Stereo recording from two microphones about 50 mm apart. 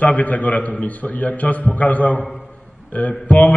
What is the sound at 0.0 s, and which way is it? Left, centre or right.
A man's voice, left.